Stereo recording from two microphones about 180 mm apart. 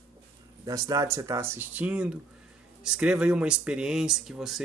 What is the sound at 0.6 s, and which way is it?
A man's voice, 20° right (ahead or behind).